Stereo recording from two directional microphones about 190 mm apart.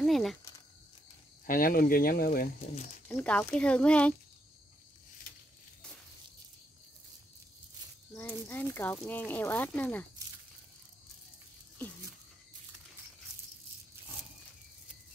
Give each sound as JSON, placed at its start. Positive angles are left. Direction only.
{"t": 0.0, "sound": "speech", "side_deg": 0}
{"t": 1.4, "sound": "speech", "side_deg": 50}
{"t": 3.1, "sound": "speech", "side_deg": 5}
{"t": 8.1, "sound": "speech", "side_deg": 10}